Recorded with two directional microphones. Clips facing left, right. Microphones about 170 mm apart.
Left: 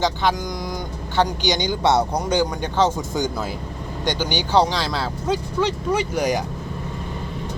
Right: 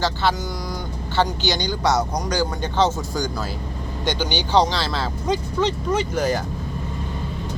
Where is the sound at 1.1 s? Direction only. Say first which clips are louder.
Left 1 dB; 15° left (ahead or behind).